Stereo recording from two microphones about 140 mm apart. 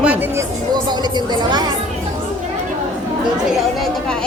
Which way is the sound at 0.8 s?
30° right (ahead or behind).